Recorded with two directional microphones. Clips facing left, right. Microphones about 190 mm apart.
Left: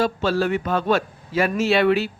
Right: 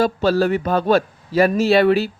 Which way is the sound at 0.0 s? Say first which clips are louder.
Right 4 dB; 40° right (ahead or behind).